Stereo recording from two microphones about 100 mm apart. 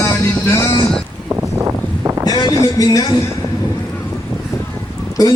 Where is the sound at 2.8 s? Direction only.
35° left (ahead or behind).